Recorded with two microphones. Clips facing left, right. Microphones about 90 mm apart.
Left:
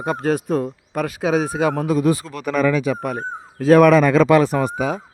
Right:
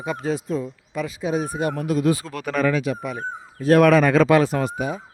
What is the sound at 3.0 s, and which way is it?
Speech, 55° left (ahead or behind).